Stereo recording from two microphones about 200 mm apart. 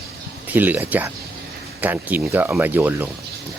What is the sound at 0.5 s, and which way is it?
Speech, 10° right (ahead or behind).